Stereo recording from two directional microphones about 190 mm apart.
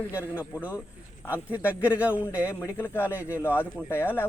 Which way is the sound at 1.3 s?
10° right (ahead or behind).